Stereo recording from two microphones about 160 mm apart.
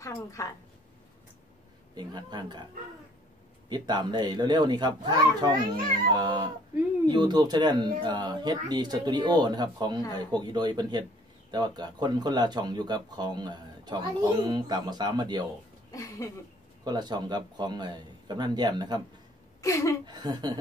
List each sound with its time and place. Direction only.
0.0 s a woman's voice: 20° left (ahead or behind)
2.0 s speech: 25° right (ahead or behind)
3.6 s speech: 25° right (ahead or behind)
15.9 s a woman's voice: 20° left (ahead or behind)
16.8 s speech: 25° right (ahead or behind)
19.6 s speech: 20° left (ahead or behind)
20.1 s speech: 25° right (ahead or behind)